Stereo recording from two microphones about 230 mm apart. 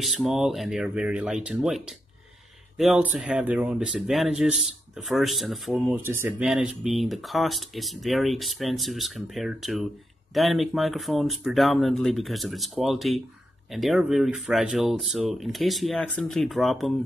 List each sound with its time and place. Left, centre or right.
0.0 s speech: centre